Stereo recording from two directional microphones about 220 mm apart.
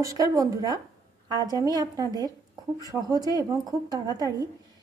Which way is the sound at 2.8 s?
15° right (ahead or behind).